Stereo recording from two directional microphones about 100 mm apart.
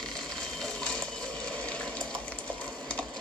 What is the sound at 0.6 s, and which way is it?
Water, 10° left (ahead or behind).